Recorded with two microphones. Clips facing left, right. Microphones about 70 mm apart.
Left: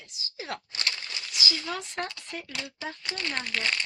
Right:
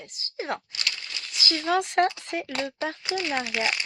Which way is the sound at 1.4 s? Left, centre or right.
Right.